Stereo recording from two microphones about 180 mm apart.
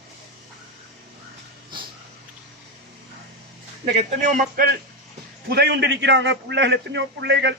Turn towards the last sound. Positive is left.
turn(degrees=-75)  # may be behind; listen again after turning